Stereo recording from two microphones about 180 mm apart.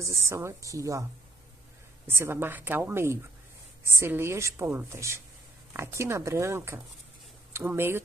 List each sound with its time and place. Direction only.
0.0 s a woman's voice: 15° right (ahead or behind)
2.0 s a woman's voice: 10° right (ahead or behind)